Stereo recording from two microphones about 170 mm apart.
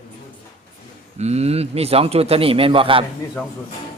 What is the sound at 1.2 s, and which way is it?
A man's voice, 40° right (ahead or behind).